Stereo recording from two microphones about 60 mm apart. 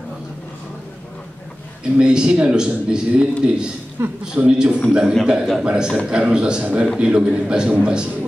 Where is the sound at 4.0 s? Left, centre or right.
Right.